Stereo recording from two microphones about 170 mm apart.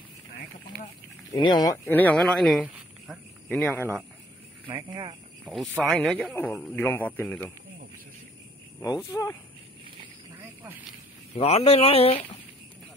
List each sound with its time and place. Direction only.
1.3 s speech: 25° left (ahead or behind)
1.9 s speech: 10° left (ahead or behind)
3.5 s speech: 10° left (ahead or behind)
4.6 s speech: 25° right (ahead or behind)
5.4 s speech: centre (ahead or behind)
8.8 s speech: 20° left (ahead or behind)
11.3 s speech: 35° left (ahead or behind)